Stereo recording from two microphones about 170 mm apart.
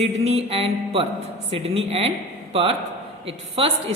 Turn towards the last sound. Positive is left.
turn(degrees=-35)  # may be behind; listen again after turning